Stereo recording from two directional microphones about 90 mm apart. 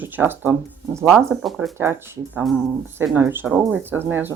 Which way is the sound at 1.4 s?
Centre (ahead or behind).